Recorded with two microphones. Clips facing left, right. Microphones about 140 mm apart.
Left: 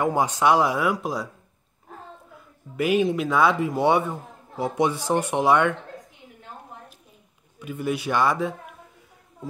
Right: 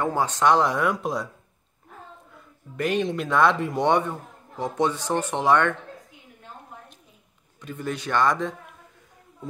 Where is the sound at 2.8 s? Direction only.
5° left (ahead or behind).